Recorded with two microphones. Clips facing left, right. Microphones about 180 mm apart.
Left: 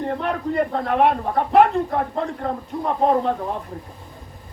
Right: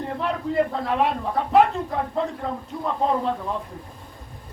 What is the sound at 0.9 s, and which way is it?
A man's voice, 55° left (ahead or behind).